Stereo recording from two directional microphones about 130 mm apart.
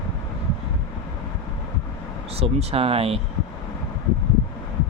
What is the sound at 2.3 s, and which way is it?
Speech, 50° right (ahead or behind).